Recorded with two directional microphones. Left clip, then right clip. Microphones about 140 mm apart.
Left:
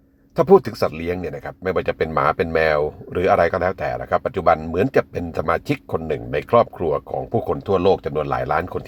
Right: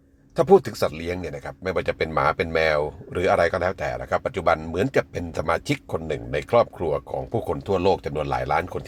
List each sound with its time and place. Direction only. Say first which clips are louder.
0.3 s speech: left 3 dB; 30° left (ahead or behind)